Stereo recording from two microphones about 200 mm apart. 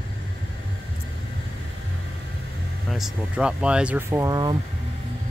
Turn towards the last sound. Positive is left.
turn(degrees=-20)  # may be behind; listen again after turning